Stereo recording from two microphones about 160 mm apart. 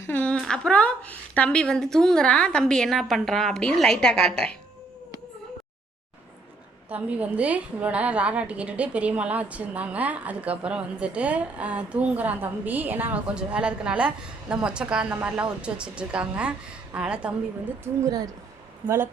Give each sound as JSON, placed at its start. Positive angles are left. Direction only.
{"t": 0.1, "sound": "a woman's voice", "side_deg": 10}
{"t": 6.9, "sound": "a woman's voice", "side_deg": -10}
{"t": 18.0, "sound": "speech", "side_deg": -25}